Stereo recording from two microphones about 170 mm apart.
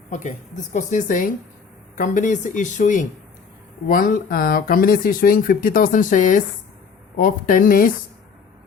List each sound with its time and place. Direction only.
0.1 s a woman's voice: 45° left (ahead or behind)